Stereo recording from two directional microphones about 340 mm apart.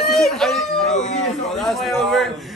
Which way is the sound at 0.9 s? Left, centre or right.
Left.